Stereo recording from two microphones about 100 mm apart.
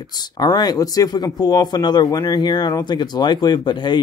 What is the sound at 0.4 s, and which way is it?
Speech, 40° left (ahead or behind).